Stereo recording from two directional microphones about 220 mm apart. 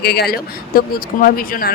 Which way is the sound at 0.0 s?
45° left (ahead or behind).